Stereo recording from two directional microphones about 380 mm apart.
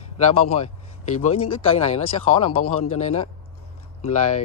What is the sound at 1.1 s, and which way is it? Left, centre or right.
Speech, centre.